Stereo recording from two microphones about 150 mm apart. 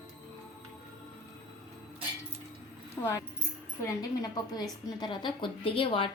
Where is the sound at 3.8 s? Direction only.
25° left (ahead or behind).